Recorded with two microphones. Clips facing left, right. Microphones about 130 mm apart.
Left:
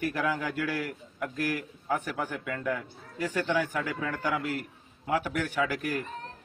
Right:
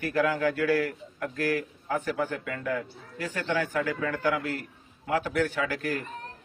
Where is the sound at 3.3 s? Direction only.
15° left (ahead or behind).